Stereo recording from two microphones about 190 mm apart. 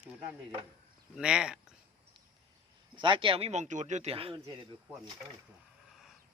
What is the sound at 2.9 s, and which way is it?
Speech, 25° right (ahead or behind).